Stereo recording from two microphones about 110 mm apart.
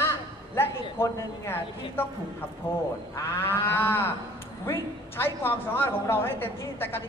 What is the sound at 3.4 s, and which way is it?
A woman's voice, 20° left (ahead or behind).